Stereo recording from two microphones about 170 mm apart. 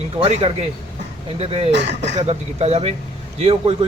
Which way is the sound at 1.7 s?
90° right.